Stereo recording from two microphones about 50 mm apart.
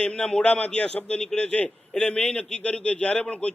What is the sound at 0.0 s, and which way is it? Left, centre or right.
A man's voice, centre.